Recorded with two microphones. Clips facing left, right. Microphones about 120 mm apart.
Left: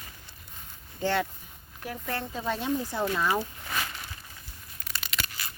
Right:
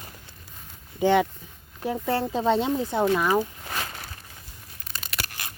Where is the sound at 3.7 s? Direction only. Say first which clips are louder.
Right 1 dB; 40° right (ahead or behind).